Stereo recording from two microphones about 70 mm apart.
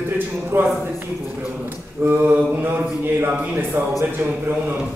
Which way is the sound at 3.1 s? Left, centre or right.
Right.